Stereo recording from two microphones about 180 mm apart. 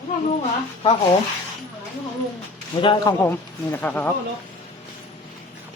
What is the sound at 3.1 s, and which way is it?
Speech, 10° left (ahead or behind).